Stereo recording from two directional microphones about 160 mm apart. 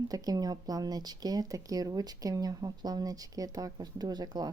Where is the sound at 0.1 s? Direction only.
25° right (ahead or behind).